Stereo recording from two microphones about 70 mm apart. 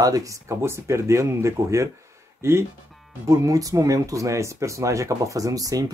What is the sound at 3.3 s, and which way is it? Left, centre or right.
Speech, right.